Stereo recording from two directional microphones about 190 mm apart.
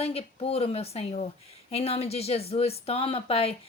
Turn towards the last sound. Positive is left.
turn(degrees=30)  # may be behind; listen again after turning